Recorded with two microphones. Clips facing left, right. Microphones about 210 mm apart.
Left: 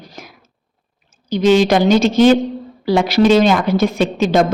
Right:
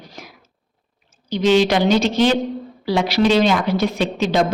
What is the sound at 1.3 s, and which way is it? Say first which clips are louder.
A woman's voice: left 3 dB; 45° left (ahead or behind).